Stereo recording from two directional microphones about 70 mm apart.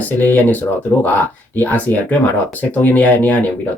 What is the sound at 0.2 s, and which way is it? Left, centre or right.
Speech, left.